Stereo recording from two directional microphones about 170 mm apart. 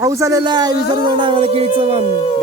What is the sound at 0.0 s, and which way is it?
A man's voice, 20° right (ahead or behind).